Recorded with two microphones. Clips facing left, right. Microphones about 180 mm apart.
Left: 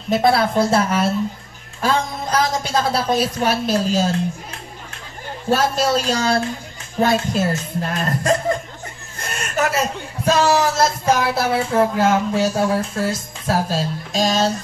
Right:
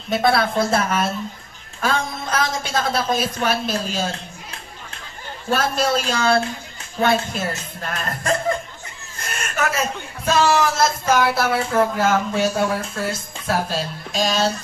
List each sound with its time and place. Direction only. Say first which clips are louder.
0.1 s speech: left 2 dB; 30° left (ahead or behind)
5.5 s speech: left 2 dB; 40° left (ahead or behind)
9.6 s a man's voice: left 3 dB; 35° left (ahead or behind)